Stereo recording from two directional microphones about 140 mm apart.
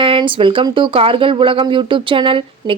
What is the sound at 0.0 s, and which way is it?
Speech, 40° right (ahead or behind).